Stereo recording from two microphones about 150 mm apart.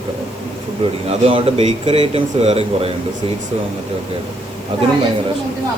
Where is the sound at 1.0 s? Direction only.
40° right (ahead or behind).